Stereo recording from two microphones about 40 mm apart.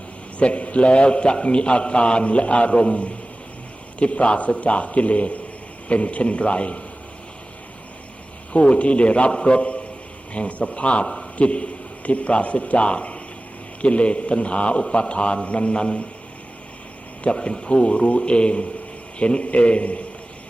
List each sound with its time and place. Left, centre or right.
0.3 s a man's voice: left
8.5 s a man's voice: left
11.0 s a sound: centre
11.3 s a man's voice: left
17.3 s a man's voice: centre